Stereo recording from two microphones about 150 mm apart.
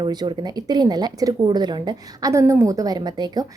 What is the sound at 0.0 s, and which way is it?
A woman's voice, 30° right (ahead or behind).